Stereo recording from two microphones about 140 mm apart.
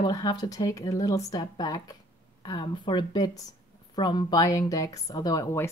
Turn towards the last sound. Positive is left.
turn(degrees=20)  # may be behind; listen again after turning